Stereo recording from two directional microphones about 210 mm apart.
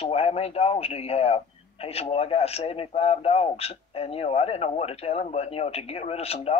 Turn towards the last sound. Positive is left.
turn(degrees=30)  # may be behind; listen again after turning